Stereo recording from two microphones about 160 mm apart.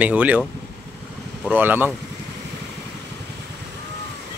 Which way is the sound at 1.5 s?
10° right (ahead or behind).